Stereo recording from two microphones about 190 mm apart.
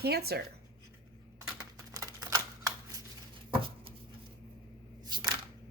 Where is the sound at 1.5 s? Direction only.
20° right (ahead or behind).